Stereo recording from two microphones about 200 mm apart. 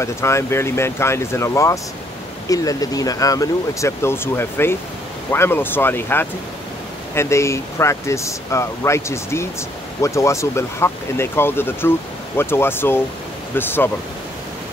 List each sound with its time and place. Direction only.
0.0 s speech: 15° left (ahead or behind)